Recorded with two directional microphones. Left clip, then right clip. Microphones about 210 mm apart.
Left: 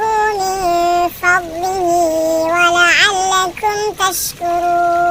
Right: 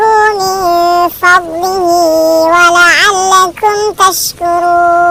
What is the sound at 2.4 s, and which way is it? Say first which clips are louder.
Child singing: right 5 dB; 15° right (ahead or behind).